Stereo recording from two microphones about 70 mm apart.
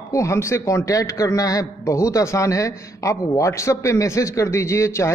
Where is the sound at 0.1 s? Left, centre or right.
Left.